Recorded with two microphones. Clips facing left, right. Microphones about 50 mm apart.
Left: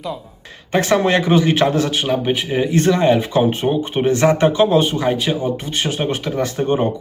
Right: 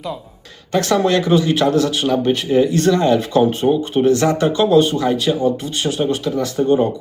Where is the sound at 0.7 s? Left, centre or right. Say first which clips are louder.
Even; left.